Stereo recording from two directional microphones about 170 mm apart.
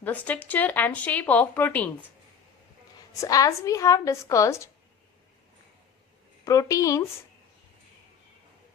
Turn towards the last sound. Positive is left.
turn(degrees=20)  # may be behind; listen again after turning